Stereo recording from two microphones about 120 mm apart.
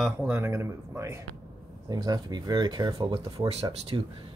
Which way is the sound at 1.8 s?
35° right (ahead or behind).